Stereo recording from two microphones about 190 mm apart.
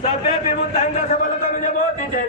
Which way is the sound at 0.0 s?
40° left (ahead or behind).